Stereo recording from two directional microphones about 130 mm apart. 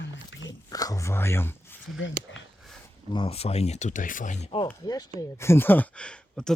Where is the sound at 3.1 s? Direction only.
45° left (ahead or behind); by 4.5 s 70° left (ahead or behind).